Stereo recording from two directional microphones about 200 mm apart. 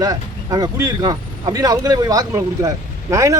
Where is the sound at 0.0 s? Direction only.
20° right (ahead or behind).